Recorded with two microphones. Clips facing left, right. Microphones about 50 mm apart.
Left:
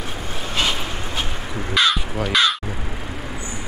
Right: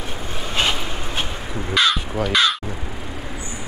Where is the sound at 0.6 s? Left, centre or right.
Right.